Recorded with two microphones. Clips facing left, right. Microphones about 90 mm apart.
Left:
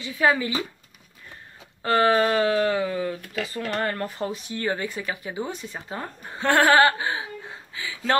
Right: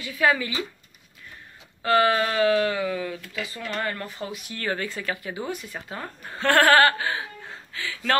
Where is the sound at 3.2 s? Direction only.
40° left (ahead or behind).